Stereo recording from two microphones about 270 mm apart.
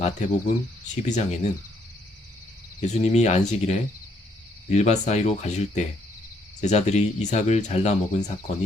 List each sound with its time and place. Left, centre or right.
0.0 s speech: left
2.8 s speech: left